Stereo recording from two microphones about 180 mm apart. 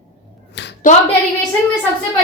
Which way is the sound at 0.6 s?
75° left (ahead or behind).